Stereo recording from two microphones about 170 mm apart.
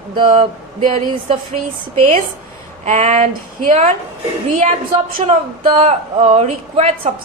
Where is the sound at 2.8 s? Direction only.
40° right (ahead or behind).